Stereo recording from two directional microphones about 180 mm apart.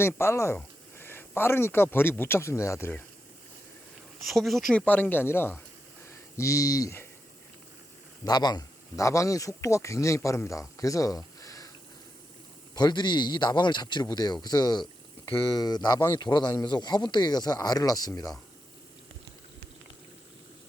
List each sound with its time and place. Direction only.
0.0 s speech: 15° left (ahead or behind)
4.3 s speech: centre (ahead or behind); by 7.1 s 15° left (ahead or behind)
8.2 s speech: 25° left (ahead or behind)
12.7 s speech: 25° left (ahead or behind)